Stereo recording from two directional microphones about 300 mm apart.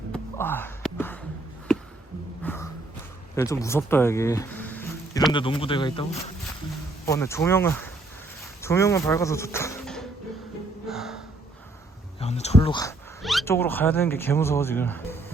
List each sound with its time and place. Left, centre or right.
0.1 s music: centre
2.4 s gasp: centre
3.3 s speech: centre
10.8 s music: centre
12.2 s a sound: left
13.2 s speech: centre